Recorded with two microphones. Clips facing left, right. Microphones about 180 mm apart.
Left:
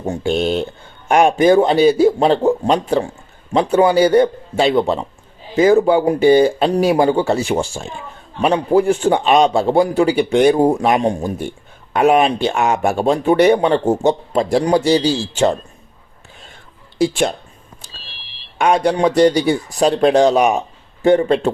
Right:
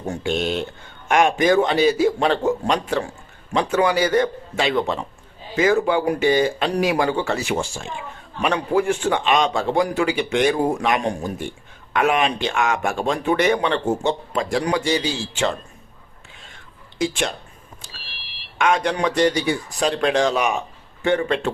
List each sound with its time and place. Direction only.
0.1 s speech: 30° left (ahead or behind)
17.0 s speech: 35° left (ahead or behind)
18.5 s speech: 35° left (ahead or behind)